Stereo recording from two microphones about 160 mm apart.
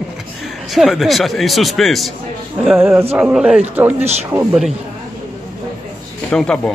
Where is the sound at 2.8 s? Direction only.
15° right (ahead or behind).